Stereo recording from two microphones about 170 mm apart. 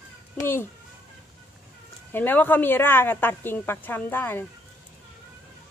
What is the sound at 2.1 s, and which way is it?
A woman's voice, 10° left (ahead or behind).